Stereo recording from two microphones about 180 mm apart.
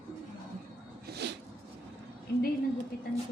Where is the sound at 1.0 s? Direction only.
65° right (ahead or behind).